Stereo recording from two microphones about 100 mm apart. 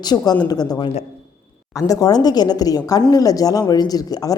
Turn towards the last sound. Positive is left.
turn(degrees=40)  # may be behind; listen again after turning